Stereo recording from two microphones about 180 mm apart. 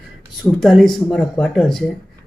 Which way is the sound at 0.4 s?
Centre (ahead or behind).